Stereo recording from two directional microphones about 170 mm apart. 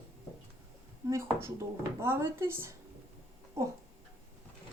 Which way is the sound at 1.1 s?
15° right (ahead or behind).